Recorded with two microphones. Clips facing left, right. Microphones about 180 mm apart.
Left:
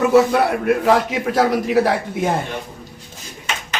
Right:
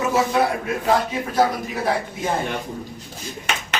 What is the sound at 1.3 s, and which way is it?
Speech, 80° left.